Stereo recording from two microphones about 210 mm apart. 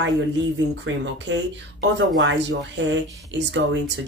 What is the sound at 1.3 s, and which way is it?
Speech, 55° right (ahead or behind).